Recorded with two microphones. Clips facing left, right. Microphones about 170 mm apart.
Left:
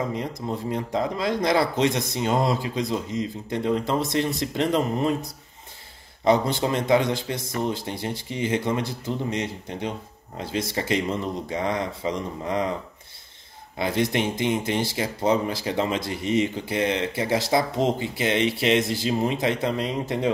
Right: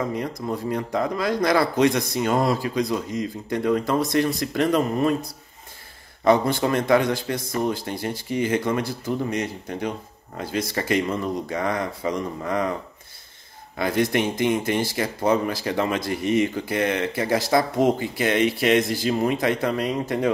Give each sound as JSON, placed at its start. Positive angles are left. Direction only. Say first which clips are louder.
{"t": 0.1, "sound": "speech", "louder": "right 2 dB", "side_deg": 20}
{"t": 13.7, "sound": "speech", "louder": "right 2 dB", "side_deg": 20}